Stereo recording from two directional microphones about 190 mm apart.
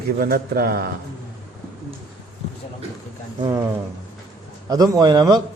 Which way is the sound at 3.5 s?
15° right (ahead or behind).